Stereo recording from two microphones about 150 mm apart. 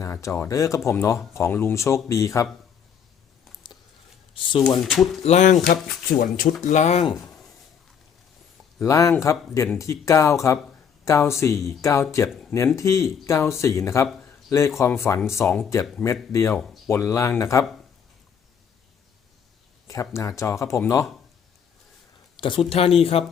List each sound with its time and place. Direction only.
0.0 s speech: 20° left (ahead or behind)
4.8 s speech: centre (ahead or behind)
5.2 s speech: 50° left (ahead or behind)
6.1 s speech: 70° left (ahead or behind); by 7.0 s 50° left (ahead or behind)
8.8 s speech: 20° left (ahead or behind)
14.2 s a sound: 20° left (ahead or behind)
14.8 s speech: 15° left (ahead or behind)
16.6 s speech: centre (ahead or behind)
16.9 s speech: 20° left (ahead or behind)
19.9 s speech: 20° left (ahead or behind)
22.4 s speech: 35° left (ahead or behind)